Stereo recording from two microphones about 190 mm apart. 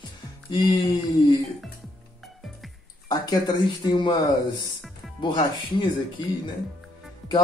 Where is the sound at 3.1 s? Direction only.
20° left (ahead or behind).